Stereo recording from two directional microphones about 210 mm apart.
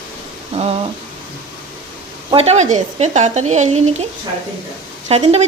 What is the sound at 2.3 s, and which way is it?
Speech, 30° right (ahead or behind).